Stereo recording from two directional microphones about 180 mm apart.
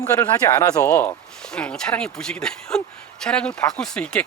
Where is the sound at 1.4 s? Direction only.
5° left (ahead or behind).